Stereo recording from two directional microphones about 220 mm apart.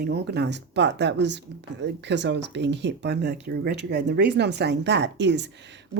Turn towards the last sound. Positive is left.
turn(degrees=-50)  # may be behind; listen again after turning